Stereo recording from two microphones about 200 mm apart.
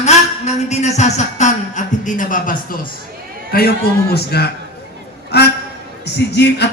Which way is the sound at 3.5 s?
50° left (ahead or behind).